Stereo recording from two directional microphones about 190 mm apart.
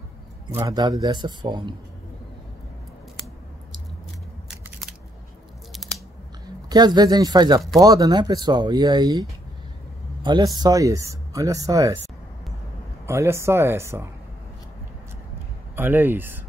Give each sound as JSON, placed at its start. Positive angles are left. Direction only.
{"t": 0.5, "sound": "speech", "side_deg": -15}
{"t": 4.5, "sound": "scissors", "side_deg": 0}
{"t": 6.7, "sound": "speech", "side_deg": -20}
{"t": 10.2, "sound": "speech", "side_deg": -20}
{"t": 13.0, "sound": "speech", "side_deg": -15}
{"t": 15.7, "sound": "speech", "side_deg": -10}